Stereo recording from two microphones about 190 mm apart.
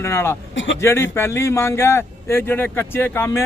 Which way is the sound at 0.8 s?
15° left (ahead or behind).